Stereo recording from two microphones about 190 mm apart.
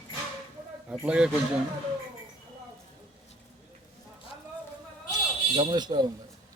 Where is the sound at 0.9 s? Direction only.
5° right (ahead or behind).